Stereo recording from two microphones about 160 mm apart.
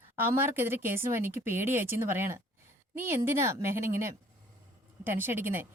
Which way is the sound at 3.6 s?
15° right (ahead or behind).